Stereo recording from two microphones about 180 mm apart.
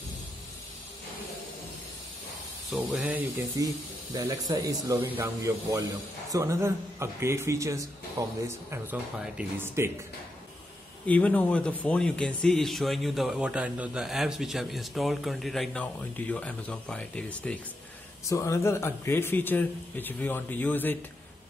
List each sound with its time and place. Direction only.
2.7 s speech: 5° right (ahead or behind)
11.1 s speech: 10° left (ahead or behind)